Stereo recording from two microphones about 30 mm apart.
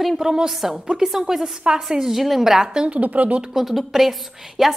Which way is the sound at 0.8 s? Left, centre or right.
Centre.